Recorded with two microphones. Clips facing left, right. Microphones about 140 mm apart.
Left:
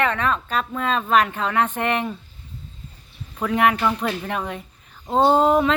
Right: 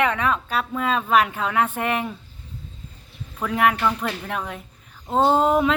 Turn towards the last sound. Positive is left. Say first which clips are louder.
# left 2 dB
turn(degrees=0)  # may be behind; listen again after turning